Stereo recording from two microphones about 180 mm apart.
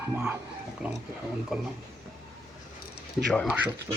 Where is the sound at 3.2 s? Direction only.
5° left (ahead or behind).